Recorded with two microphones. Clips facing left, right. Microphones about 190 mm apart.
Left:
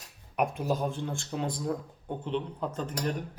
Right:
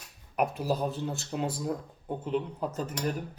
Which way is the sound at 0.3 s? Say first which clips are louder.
Even; centre (ahead or behind).